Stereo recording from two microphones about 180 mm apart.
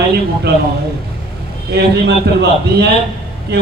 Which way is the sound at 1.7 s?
65° right (ahead or behind).